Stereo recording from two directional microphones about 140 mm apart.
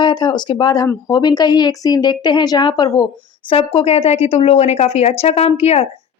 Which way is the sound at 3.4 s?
40° left (ahead or behind).